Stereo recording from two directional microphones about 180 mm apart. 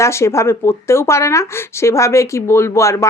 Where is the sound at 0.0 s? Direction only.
15° left (ahead or behind).